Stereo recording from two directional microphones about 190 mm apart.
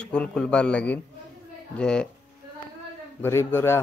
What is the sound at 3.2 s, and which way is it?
Speech, 15° left (ahead or behind).